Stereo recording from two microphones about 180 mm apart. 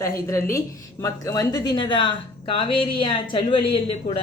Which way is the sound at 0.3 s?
15° left (ahead or behind).